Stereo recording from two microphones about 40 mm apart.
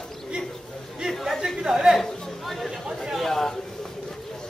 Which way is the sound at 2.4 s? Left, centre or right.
Centre.